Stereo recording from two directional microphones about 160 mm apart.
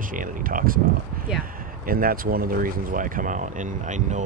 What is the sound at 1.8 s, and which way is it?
Speech, 65° right (ahead or behind).